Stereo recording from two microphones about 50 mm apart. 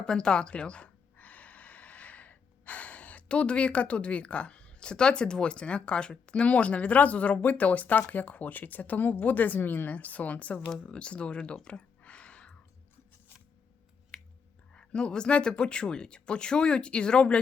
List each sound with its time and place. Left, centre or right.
0.0 s speech: centre
11.5 s a sound: centre
14.1 s clicking: centre
14.7 s speech: centre